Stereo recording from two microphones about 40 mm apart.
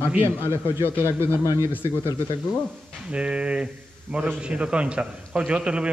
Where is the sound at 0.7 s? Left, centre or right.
Right.